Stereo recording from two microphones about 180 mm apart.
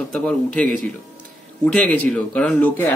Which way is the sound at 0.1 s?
5° left (ahead or behind).